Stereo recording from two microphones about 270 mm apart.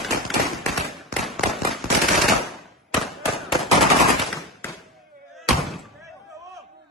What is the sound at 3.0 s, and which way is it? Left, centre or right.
Machine gun, centre.